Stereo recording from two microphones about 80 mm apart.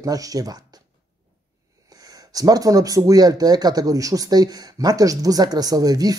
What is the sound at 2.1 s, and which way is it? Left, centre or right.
Speech, right.